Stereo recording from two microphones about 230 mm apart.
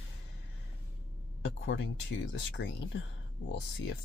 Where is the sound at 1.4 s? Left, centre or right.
Left.